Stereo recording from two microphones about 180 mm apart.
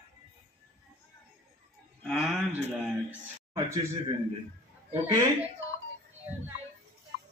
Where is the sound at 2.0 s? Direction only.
Centre (ahead or behind).